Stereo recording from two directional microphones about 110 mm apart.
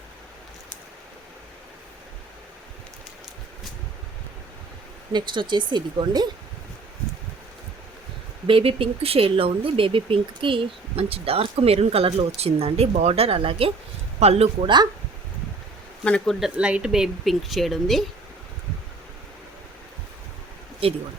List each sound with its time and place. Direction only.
5.1 s speech: 45° right (ahead or behind)
8.4 s speech: 55° right (ahead or behind)
14.2 s speech: 70° right (ahead or behind)
16.0 s speech: 5° left (ahead or behind)
16.6 s speech: 10° right (ahead or behind)
20.8 s speech: 60° right (ahead or behind)